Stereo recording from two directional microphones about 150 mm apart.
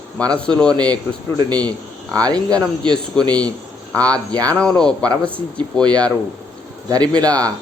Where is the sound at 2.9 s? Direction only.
5° left (ahead or behind).